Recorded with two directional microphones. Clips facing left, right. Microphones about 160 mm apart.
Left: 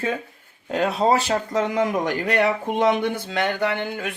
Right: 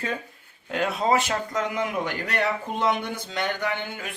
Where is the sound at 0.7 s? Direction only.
35° left (ahead or behind).